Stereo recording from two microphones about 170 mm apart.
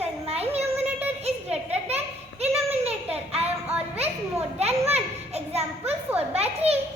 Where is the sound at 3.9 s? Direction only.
35° right (ahead or behind).